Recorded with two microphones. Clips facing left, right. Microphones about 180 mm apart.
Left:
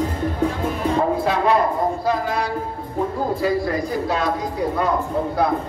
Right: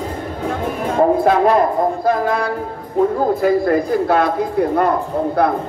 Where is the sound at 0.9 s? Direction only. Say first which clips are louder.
Right 9 dB; 50° right (ahead or behind).